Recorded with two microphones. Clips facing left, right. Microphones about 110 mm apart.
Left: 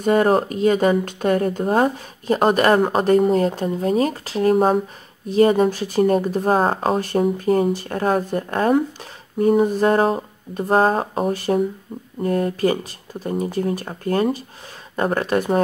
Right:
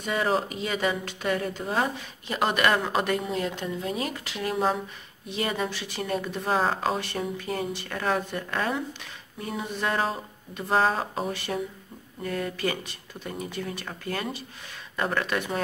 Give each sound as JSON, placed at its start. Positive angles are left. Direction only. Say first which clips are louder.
{"t": 0.0, "sound": "speech", "louder": "left 10 dB", "side_deg": 45}